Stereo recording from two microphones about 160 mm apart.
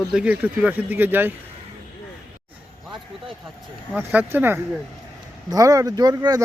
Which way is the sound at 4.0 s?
10° right (ahead or behind).